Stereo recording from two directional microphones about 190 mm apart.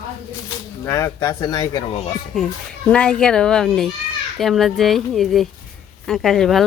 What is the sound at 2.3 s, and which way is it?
A child's voice, centre (ahead or behind).